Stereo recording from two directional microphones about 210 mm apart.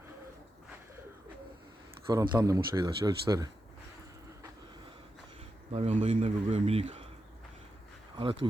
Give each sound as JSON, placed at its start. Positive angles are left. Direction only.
{"t": 2.0, "sound": "a man's voice", "side_deg": -15}
{"t": 5.7, "sound": "speech", "side_deg": -30}
{"t": 8.2, "sound": "speech", "side_deg": -25}